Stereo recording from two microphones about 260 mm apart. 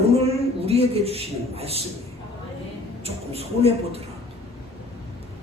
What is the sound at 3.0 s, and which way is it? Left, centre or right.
Speech, right.